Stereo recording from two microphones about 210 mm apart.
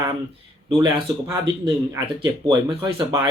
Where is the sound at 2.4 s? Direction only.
20° right (ahead or behind).